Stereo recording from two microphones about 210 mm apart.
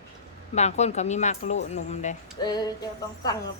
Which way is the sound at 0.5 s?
30° left (ahead or behind).